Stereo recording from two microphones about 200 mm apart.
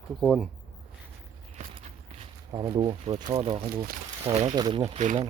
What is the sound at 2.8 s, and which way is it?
Speech, 30° right (ahead or behind).